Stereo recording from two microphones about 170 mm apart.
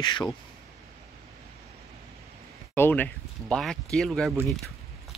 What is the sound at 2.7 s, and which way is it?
Speech, 10° left (ahead or behind).